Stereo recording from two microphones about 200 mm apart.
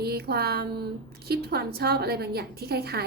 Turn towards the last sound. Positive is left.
turn(degrees=-50)  # may be behind; listen again after turning